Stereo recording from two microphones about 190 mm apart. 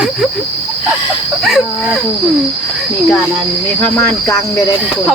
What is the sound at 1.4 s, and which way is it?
Speech, centre (ahead or behind).